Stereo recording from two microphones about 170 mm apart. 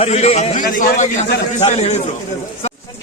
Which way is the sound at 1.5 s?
40° left (ahead or behind).